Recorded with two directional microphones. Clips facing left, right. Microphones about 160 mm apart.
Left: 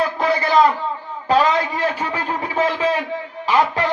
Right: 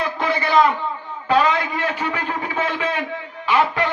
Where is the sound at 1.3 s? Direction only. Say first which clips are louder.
Left 1 dB; 35° left (ahead or behind).